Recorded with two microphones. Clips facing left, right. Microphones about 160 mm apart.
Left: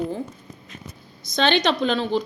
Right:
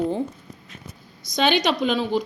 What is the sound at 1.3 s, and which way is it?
Speech, 10° right (ahead or behind).